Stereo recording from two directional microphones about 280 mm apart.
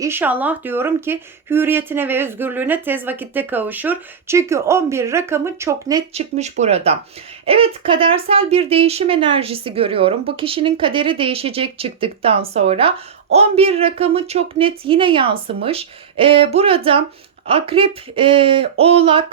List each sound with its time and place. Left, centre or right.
0.0 s speech: centre
6.1 s speech: right